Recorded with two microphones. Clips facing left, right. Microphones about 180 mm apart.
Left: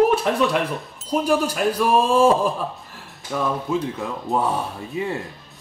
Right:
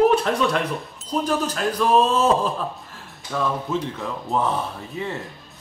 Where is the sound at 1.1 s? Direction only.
10° left (ahead or behind).